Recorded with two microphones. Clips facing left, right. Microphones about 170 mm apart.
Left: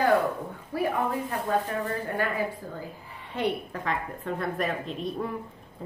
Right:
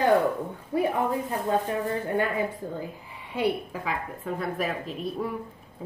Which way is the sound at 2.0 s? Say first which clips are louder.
Right 3 dB; 20° right (ahead or behind).